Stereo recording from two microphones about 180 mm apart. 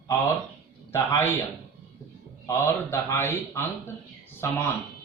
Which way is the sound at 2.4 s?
15° left (ahead or behind).